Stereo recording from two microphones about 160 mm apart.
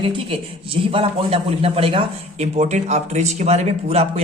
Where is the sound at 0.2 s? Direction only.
35° right (ahead or behind).